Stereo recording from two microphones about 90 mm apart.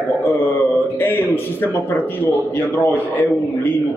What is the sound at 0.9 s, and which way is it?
A man's voice, 25° left (ahead or behind).